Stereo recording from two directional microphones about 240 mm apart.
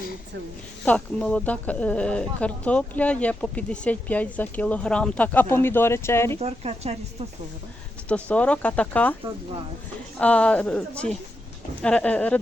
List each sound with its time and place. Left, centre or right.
0.9 s speech: centre
6.4 s speech: right
8.0 s speech: centre
10.2 s speech: centre